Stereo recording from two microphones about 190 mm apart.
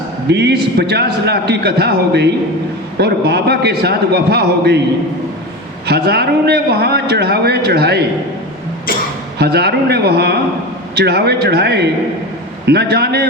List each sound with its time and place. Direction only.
0.3 s a man's voice: 60° right (ahead or behind)
5.8 s a man's voice: 60° right (ahead or behind)
9.4 s a man's voice: 60° right (ahead or behind)